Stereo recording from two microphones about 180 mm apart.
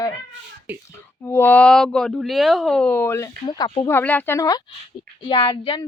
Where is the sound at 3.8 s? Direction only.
10° left (ahead or behind).